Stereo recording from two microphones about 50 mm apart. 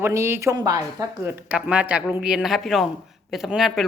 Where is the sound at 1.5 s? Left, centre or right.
Right.